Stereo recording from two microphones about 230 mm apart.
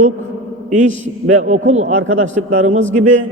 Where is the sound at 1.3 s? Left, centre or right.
Right.